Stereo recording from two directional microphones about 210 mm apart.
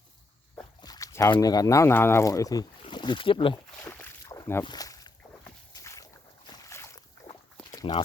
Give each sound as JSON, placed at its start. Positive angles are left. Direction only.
{"t": 0.5, "sound": "speech", "side_deg": 20}
{"t": 3.8, "sound": "boat", "side_deg": 15}
{"t": 4.6, "sound": "a sound", "side_deg": 20}
{"t": 5.7, "sound": "boat", "side_deg": 15}
{"t": 7.7, "sound": "walk", "side_deg": 20}